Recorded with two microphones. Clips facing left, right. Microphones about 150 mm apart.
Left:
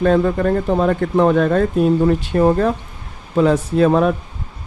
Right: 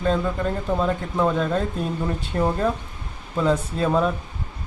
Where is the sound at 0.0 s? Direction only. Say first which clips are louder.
Left 8 dB; 65° left (ahead or behind).